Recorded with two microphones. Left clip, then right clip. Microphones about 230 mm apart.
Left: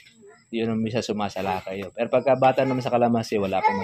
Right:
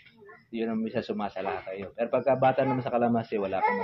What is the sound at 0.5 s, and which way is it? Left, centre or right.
Speech, left.